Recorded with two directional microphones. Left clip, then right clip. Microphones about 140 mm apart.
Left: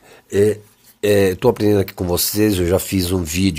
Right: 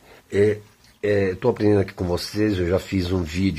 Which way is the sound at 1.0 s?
70° left (ahead or behind).